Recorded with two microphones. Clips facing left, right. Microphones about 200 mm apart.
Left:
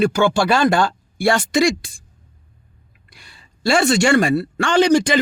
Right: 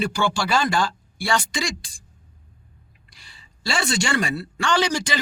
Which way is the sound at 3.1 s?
55° left (ahead or behind).